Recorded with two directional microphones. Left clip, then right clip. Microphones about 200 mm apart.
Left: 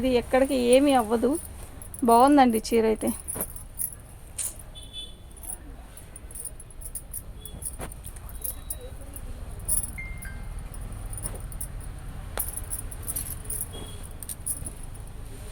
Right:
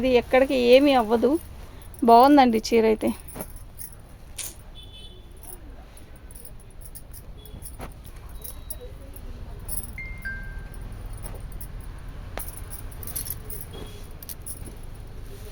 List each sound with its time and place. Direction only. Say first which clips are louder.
0.0 s speech: right 3 dB; 40° right (ahead or behind)
4.4 s a sound: even; 40° right (ahead or behind)
7.8 s keys jangling: even; centre (ahead or behind)
12.4 s keys jangling: left 1 dB; 5° left (ahead or behind)